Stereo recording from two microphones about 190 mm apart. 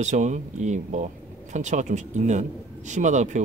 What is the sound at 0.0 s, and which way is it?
Speech, 40° right (ahead or behind).